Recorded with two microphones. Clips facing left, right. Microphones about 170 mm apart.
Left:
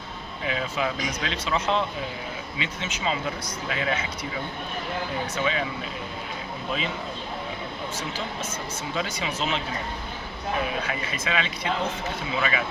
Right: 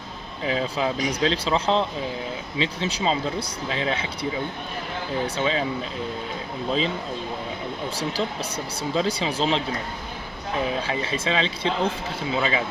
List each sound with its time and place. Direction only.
0.4 s speech: 30° right (ahead or behind)
6.7 s speech: 30° right (ahead or behind)
9.0 s speech: 30° right (ahead or behind)
10.8 s speech: 30° right (ahead or behind)